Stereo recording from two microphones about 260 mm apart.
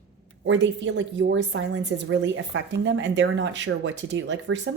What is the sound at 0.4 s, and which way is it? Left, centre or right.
Speech, right.